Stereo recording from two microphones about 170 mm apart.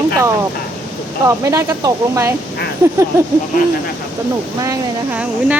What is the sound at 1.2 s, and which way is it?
Speech, 20° right (ahead or behind).